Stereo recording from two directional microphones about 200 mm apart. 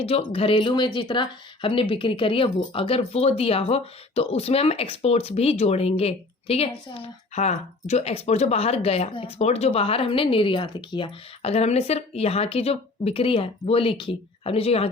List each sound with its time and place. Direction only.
0.0 s speech: 30° left (ahead or behind)